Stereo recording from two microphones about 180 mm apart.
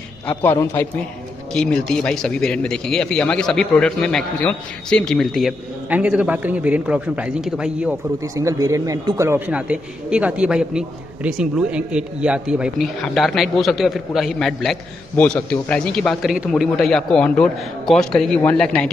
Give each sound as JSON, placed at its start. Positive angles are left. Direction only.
{"t": 0.3, "sound": "a man's voice", "side_deg": 10}
{"t": 8.4, "sound": "a man's voice", "side_deg": -15}